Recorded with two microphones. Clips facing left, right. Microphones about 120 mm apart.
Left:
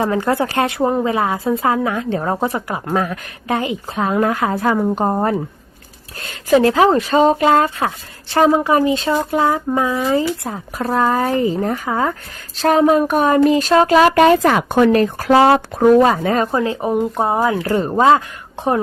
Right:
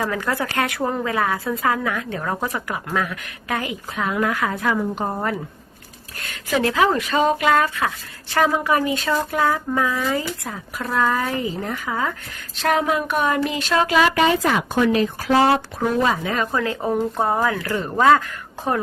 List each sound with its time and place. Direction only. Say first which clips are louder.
0.0 s a woman's voice: left 6 dB; 30° left (ahead or behind)
6.5 s speech: left 7 dB; 30° left (ahead or behind); by 15.4 s 50° left (ahead or behind)
15.4 s speech: left 5 dB; 75° left (ahead or behind)
15.8 s speech: left 9 dB; 45° left (ahead or behind)
16.5 s a woman's voice: left 4 dB; 20° left (ahead or behind)